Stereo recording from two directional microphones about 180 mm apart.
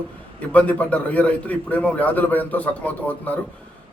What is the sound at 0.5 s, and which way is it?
A man's voice, 10° left (ahead or behind).